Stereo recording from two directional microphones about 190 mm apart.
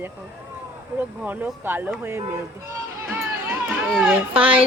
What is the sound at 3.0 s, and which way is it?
Children playing, 10° right (ahead or behind).